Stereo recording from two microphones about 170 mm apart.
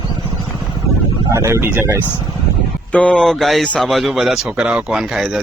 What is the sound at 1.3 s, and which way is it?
Speech, 15° right (ahead or behind).